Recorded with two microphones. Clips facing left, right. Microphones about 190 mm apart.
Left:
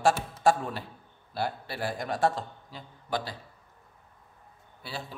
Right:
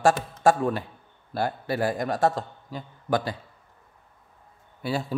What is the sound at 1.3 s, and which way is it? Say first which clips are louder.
A man's voice: right 6 dB; 45° right (ahead or behind).